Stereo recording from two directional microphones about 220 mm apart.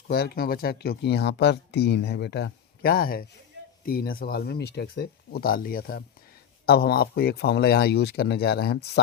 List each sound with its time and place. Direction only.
0.1 s speech: 45° left (ahead or behind)